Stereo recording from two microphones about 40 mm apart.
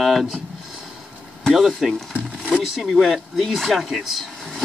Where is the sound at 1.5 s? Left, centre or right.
Centre.